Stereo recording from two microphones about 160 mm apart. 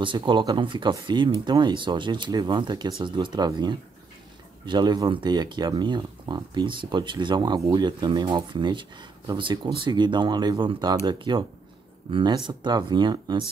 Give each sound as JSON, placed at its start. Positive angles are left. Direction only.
{"t": 0.0, "sound": "speech", "side_deg": -30}